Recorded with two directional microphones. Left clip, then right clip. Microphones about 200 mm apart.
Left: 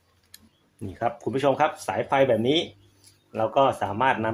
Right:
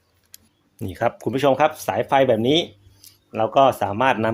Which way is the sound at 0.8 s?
55° right (ahead or behind).